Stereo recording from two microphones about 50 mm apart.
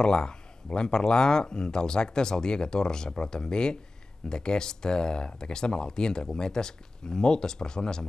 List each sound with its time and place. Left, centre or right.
0.0 s speech: centre